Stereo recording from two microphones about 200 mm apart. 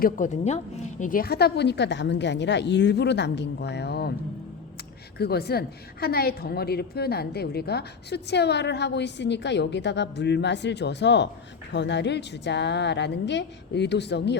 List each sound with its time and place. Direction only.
0.0 s a woman's voice: 40° left (ahead or behind); by 4.1 s 55° left (ahead or behind)
5.1 s a woman's voice: 50° left (ahead or behind)